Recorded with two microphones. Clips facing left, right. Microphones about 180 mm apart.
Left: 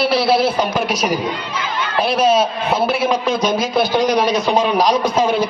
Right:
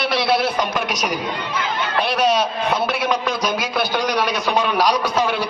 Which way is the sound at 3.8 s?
20° left (ahead or behind).